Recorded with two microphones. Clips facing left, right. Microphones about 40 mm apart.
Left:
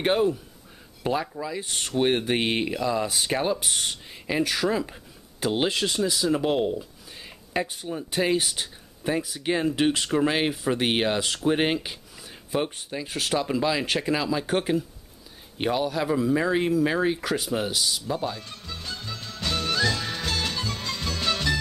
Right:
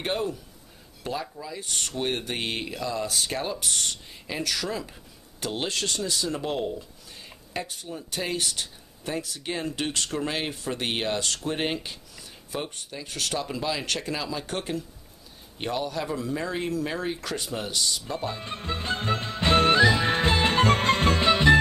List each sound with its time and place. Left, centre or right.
0.0 s speech: centre
18.2 s speech: right
19.8 s music: right
20.5 s music: right
21.2 s music: right